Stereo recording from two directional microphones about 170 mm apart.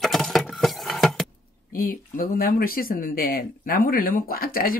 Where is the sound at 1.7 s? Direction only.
60° left (ahead or behind).